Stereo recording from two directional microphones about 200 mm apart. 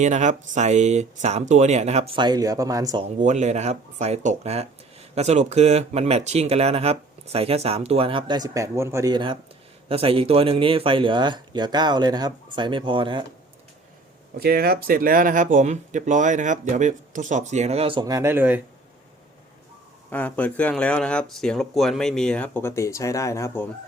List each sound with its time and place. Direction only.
0.0 s speech: 35° right (ahead or behind); by 3.1 s 20° right (ahead or behind)
3.2 s speech: 35° right (ahead or behind)
14.3 s speech: 50° right (ahead or behind); by 18.6 s 10° right (ahead or behind)
20.1 s speech: 5° left (ahead or behind)